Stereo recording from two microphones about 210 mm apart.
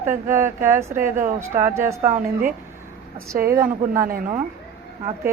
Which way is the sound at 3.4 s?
15° right (ahead or behind).